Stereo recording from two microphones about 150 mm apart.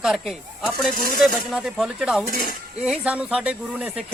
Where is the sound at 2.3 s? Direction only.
75° left (ahead or behind).